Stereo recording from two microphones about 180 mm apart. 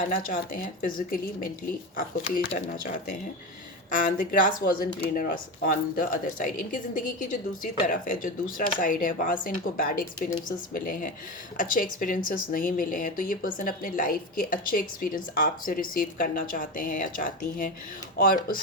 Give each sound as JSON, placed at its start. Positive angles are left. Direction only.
{"t": 0.1, "sound": "a woman's voice", "side_deg": 55}